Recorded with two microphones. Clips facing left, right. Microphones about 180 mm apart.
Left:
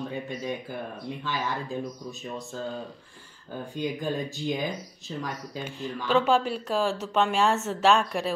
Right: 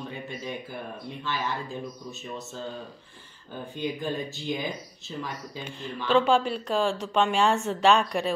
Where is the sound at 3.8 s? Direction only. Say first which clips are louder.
Left 1 dB; 15° left (ahead or behind).